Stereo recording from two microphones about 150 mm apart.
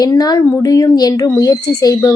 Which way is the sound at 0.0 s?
25° left (ahead or behind).